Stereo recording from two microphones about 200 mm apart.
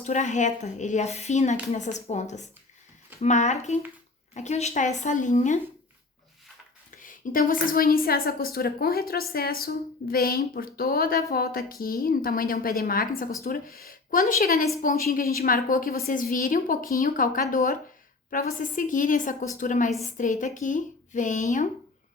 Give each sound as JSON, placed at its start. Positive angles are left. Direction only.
{"t": 0.0, "sound": "speech", "side_deg": 35}
{"t": 6.9, "sound": "a woman's voice", "side_deg": 40}